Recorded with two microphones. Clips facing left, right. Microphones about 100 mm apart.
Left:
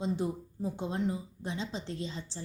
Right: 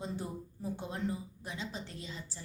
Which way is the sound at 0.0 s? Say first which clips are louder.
Left 7 dB; 20° left (ahead or behind).